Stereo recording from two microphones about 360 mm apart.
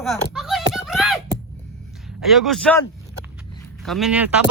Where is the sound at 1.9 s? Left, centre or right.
Centre.